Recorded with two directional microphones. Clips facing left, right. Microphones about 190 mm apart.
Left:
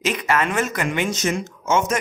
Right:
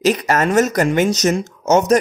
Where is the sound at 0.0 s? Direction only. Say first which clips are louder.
Right 5 dB; 40° right (ahead or behind).